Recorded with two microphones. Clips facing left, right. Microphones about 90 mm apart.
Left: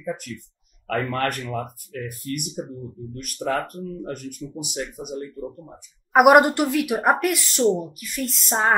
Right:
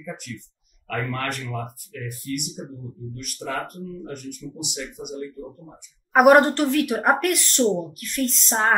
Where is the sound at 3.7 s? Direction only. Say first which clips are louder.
Left 3 dB; 45° left (ahead or behind).